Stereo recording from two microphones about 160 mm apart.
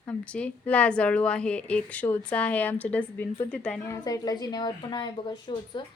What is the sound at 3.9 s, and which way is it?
A woman's voice, 20° left (ahead or behind).